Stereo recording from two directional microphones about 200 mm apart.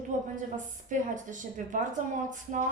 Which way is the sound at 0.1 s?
40° right (ahead or behind).